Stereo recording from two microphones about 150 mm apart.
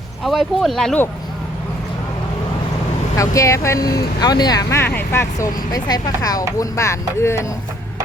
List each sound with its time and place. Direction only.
0.3 s speech: centre (ahead or behind)
3.2 s speech: 20° left (ahead or behind)